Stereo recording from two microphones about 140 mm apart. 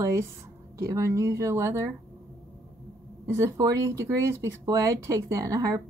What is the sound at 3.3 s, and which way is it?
Speech, 25° right (ahead or behind).